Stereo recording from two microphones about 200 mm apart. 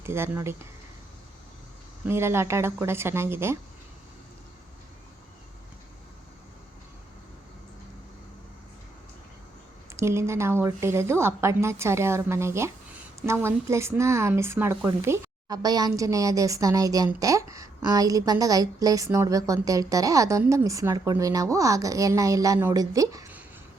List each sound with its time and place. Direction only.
0.0 s speech: 10° right (ahead or behind)
2.0 s speech: 10° right (ahead or behind)
9.9 s speech: 15° right (ahead or behind)